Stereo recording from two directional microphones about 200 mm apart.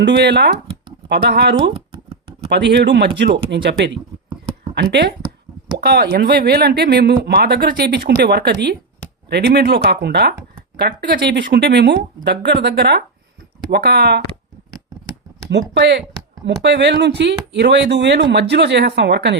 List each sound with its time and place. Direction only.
0.0 s speech: 60° right (ahead or behind)
1.7 s chopping: 30° right (ahead or behind)
2.5 s speech: 60° right (ahead or behind)
15.4 s speech: 60° right (ahead or behind)